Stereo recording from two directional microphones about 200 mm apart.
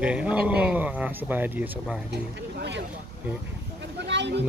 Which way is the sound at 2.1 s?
55° right (ahead or behind).